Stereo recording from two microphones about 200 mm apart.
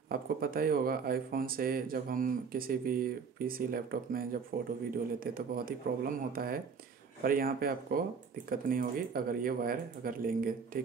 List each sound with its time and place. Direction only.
0.1 s speech: 45° right (ahead or behind)